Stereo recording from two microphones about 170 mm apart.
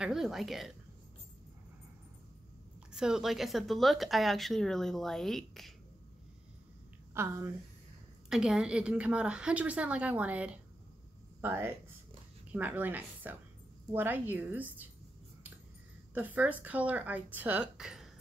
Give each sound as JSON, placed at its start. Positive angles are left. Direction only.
{"t": 0.0, "sound": "speech", "side_deg": 0}
{"t": 2.9, "sound": "speech", "side_deg": -5}
{"t": 7.2, "sound": "a woman's voice", "side_deg": -15}
{"t": 8.3, "sound": "a woman's voice", "side_deg": -5}
{"t": 16.2, "sound": "a woman's voice", "side_deg": -10}